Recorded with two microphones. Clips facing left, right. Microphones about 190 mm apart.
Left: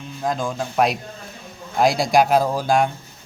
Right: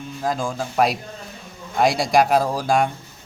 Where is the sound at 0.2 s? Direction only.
Centre (ahead or behind).